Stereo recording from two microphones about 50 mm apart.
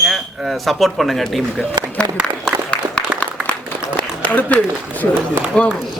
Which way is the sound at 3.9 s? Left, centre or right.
Left.